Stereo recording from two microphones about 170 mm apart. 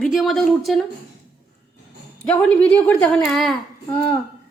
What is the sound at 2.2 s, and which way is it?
A woman's voice, 10° left (ahead or behind).